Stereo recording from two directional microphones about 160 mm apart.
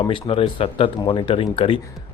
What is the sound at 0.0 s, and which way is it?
Speech, 35° left (ahead or behind).